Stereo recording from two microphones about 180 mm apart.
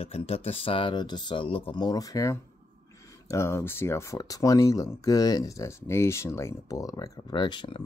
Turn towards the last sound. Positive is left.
turn(degrees=25)  # may be behind; listen again after turning